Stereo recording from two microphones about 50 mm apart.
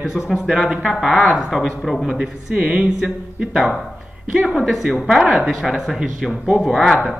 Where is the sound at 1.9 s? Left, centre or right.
Centre.